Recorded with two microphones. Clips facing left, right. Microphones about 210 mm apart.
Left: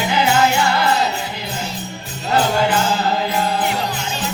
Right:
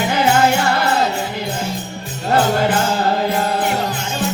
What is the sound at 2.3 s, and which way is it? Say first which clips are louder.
Music: right 1 dB; 50° right (ahead or behind).